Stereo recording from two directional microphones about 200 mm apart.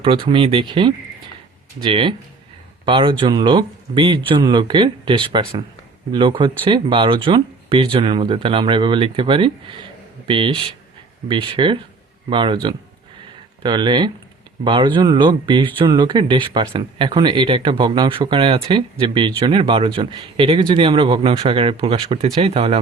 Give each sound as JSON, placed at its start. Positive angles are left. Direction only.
{"t": 0.0, "sound": "speech", "side_deg": -25}
{"t": 13.6, "sound": "speech", "side_deg": -25}